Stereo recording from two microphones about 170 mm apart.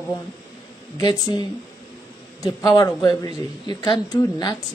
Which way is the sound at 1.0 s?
25° left (ahead or behind).